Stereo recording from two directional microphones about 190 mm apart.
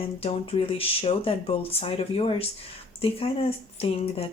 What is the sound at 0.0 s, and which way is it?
Speech, 30° left (ahead or behind).